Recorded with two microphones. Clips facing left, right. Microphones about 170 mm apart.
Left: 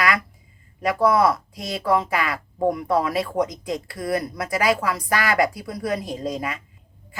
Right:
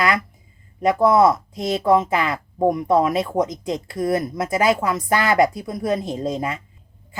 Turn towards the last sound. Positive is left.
turn(degrees=-25)  # may be behind; listen again after turning